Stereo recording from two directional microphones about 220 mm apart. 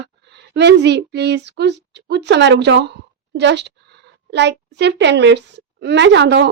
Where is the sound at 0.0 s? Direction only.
50° right (ahead or behind).